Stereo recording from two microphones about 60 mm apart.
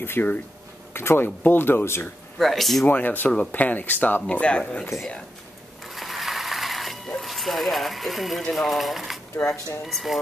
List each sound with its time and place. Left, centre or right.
0.0 s speech: left
2.3 s speech: centre
2.9 s speech: left
5.9 s mechanisms: centre
7.2 s speech: centre